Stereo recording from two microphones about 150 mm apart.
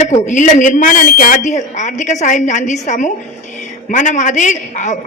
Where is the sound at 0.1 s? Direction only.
55° left (ahead or behind).